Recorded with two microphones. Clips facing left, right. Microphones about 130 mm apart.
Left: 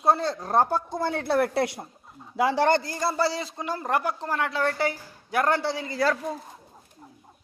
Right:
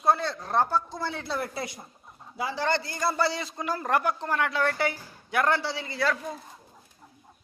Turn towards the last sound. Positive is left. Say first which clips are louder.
# left 3 dB
turn(degrees=40)  # may be behind; listen again after turning